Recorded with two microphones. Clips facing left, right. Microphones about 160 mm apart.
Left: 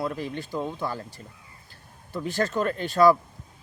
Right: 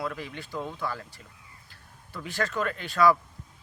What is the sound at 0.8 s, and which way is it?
Speech, 40° left (ahead or behind).